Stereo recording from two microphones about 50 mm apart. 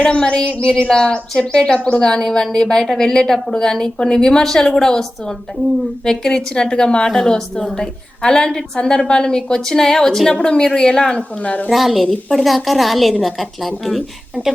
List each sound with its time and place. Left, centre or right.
0.0 s a woman's voice: centre
6.1 s a woman's voice: centre
11.2 s speech: left
11.7 s a woman's voice: centre